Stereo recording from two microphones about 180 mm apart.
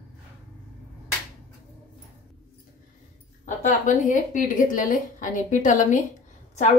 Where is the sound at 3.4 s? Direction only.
45° left (ahead or behind).